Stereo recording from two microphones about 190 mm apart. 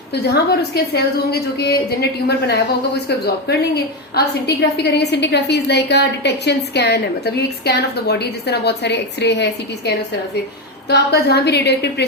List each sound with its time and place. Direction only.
0.1 s a woman's voice: 60° left (ahead or behind)